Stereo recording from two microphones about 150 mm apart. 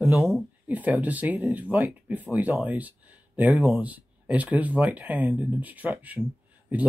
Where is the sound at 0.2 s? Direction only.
5° right (ahead or behind).